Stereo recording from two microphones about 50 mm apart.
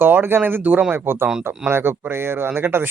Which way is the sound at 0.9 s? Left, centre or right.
Right.